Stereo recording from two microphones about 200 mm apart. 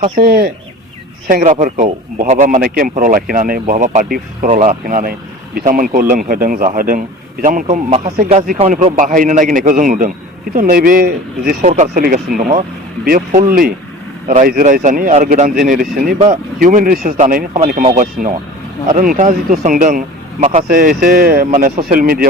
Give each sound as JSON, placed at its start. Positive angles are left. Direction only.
{"t": 0.2, "sound": "a man's voice", "side_deg": -50}
{"t": 16.1, "sound": "speech", "side_deg": -25}
{"t": 16.6, "sound": "a man's voice", "side_deg": -45}